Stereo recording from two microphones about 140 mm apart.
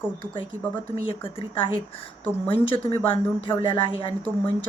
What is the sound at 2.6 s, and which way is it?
Speech, 40° left (ahead or behind).